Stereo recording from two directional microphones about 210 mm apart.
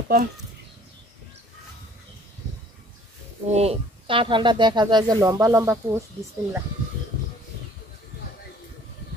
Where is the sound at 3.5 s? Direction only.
30° right (ahead or behind); by 6.0 s 15° right (ahead or behind).